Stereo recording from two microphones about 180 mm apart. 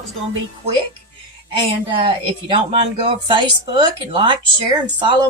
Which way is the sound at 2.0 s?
30° right (ahead or behind).